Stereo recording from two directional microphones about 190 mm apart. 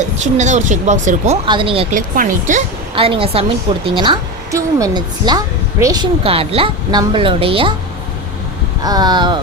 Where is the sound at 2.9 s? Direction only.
30° right (ahead or behind).